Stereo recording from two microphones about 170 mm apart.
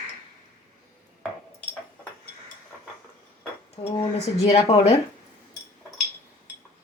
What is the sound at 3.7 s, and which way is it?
Speech, 35° left (ahead or behind).